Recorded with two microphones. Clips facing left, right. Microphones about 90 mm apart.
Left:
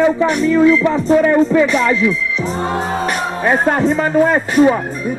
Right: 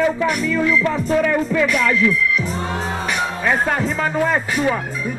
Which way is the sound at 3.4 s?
30° left (ahead or behind).